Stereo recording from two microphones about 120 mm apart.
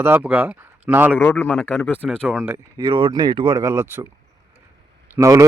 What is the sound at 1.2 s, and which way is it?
A man's voice, 20° left (ahead or behind).